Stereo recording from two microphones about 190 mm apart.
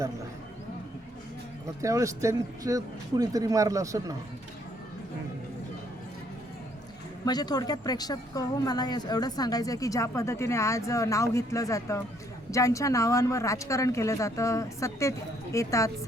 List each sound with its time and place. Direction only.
1.6 s speech: 15° right (ahead or behind)
7.3 s speech: 20° left (ahead or behind)